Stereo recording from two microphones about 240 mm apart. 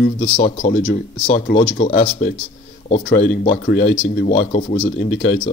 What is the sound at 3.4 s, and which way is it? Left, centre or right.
Speech, left.